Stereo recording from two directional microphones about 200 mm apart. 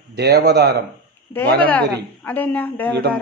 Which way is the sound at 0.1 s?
55° right (ahead or behind).